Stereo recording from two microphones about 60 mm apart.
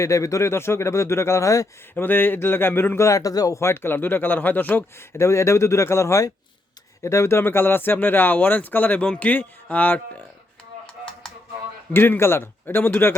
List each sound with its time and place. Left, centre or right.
0.0 s speech: left
2.0 s speech: left
3.0 s speech: left
3.6 s speech: left
4.9 s speech: left
10.8 s a sound: centre
11.9 s speech: left